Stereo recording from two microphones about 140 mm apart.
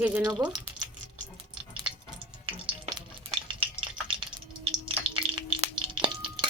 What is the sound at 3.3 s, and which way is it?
Frying, 40° right (ahead or behind).